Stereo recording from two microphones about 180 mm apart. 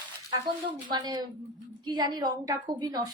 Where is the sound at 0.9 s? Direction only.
25° right (ahead or behind).